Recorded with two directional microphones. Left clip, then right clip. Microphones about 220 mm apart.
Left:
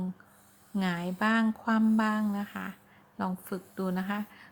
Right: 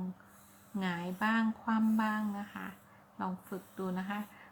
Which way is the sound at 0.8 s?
45° left (ahead or behind).